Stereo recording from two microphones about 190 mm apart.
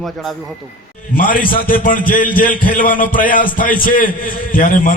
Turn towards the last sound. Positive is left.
turn(degrees=45)  # may be behind; listen again after turning